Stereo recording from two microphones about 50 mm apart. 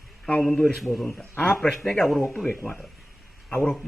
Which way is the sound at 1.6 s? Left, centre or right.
Centre.